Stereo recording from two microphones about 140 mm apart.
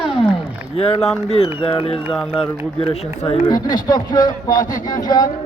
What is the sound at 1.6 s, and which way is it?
Speech, 40° left (ahead or behind).